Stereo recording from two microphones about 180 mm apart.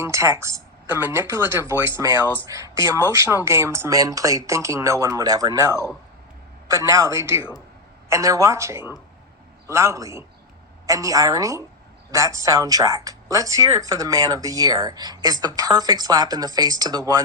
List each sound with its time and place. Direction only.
0.0 s speech: 15° right (ahead or behind)